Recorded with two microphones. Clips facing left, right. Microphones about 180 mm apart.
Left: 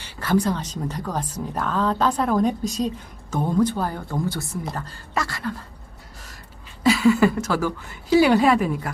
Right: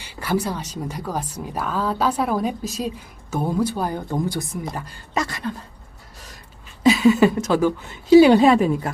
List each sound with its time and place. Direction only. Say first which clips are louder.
0.0 s a woman's voice: left 2 dB; 10° right (ahead or behind)
6.8 s a woman's voice: right 2 dB; 20° right (ahead or behind)